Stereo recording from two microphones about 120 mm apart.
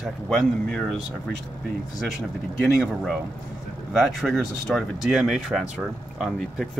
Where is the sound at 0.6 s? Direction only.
5° left (ahead or behind).